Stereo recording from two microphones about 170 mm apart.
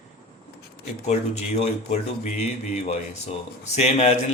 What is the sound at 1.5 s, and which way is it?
Speech, 40° left (ahead or behind).